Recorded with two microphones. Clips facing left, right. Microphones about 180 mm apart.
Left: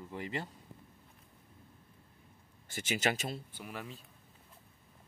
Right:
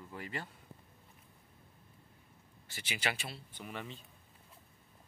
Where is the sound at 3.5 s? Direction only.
5° left (ahead or behind).